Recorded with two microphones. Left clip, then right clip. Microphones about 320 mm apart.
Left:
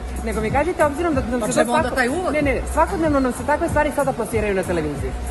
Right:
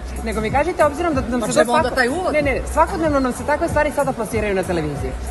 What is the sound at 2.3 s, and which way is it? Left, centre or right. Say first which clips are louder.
Speech: right 2 dB; centre.